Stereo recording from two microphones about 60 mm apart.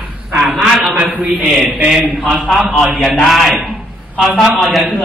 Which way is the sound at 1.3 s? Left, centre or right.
Centre.